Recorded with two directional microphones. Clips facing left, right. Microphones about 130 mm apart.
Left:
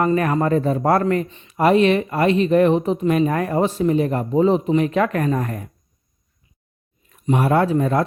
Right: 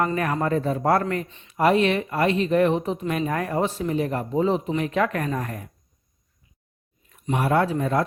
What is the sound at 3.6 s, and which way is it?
Speech, 25° left (ahead or behind).